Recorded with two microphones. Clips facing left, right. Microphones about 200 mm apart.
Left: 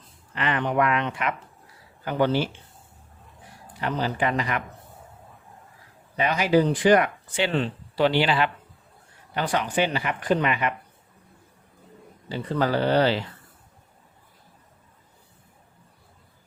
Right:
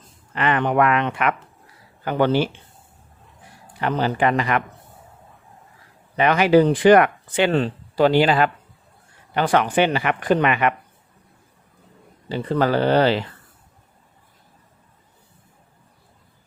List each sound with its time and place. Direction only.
0.3 s speech: 60° right (ahead or behind)
3.8 s speech: 65° right (ahead or behind)
6.1 s speech: 70° right (ahead or behind); by 8.4 s 45° right (ahead or behind)
9.3 s speech: 65° right (ahead or behind)
12.3 s speech: 70° right (ahead or behind)